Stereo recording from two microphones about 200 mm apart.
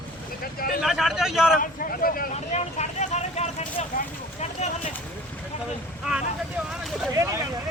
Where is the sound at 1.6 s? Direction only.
45° left (ahead or behind).